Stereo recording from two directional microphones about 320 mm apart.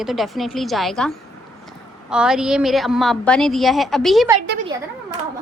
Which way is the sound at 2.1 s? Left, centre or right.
Centre.